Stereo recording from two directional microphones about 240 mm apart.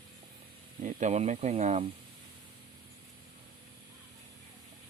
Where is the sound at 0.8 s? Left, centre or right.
Right.